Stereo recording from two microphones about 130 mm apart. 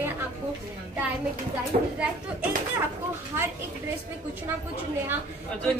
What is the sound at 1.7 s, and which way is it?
Speech, 70° right (ahead or behind).